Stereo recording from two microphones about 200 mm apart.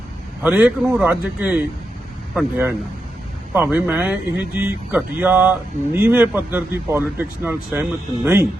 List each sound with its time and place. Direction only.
0.4 s a man's voice: 10° right (ahead or behind)